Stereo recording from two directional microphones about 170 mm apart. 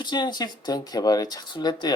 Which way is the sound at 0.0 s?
25° left (ahead or behind).